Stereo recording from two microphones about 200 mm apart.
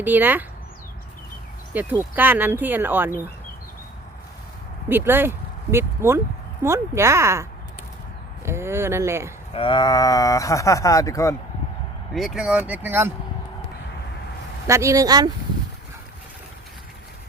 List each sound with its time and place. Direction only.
0.0 s speech: 10° right (ahead or behind)
1.7 s speech: 10° right (ahead or behind)
4.9 s speech: 10° right (ahead or behind)
8.4 s speech: 10° right (ahead or behind)
9.6 s speech: 25° left (ahead or behind)
12.1 s speech: centre (ahead or behind)
14.7 s speech: 15° right (ahead or behind)